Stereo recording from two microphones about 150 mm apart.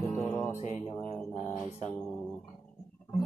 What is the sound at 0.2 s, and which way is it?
Music, 15° left (ahead or behind).